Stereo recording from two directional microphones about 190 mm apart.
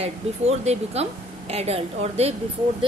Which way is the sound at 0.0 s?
35° right (ahead or behind).